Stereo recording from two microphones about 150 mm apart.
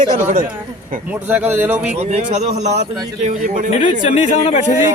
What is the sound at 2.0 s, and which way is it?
Speech, 45° right (ahead or behind).